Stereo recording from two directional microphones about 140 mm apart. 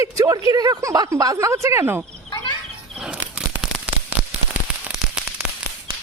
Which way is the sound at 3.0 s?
5° right (ahead or behind).